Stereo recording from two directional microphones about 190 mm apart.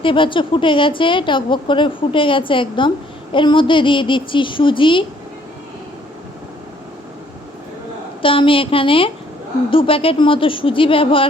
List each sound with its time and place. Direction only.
0.0 s a woman's voice: 25° left (ahead or behind)
8.2 s a woman's voice: 25° left (ahead or behind)